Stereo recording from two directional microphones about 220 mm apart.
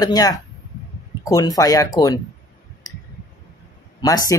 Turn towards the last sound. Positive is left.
turn(degrees=15)  # may be behind; listen again after turning